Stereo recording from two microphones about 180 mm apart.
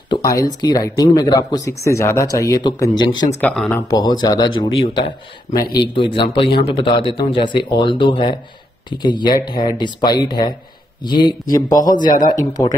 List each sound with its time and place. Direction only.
0.1 s speech: 20° left (ahead or behind)
3.3 s speech: 5° left (ahead or behind)
3.9 s speech: 25° left (ahead or behind)